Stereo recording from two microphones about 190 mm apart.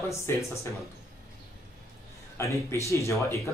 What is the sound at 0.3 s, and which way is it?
Speech, 15° left (ahead or behind).